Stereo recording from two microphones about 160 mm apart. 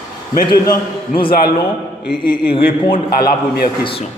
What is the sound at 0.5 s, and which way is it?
Speech, 20° left (ahead or behind).